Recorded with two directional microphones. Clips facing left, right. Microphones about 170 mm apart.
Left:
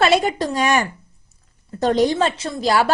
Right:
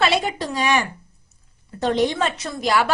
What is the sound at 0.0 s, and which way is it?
A woman's voice, 45° left (ahead or behind).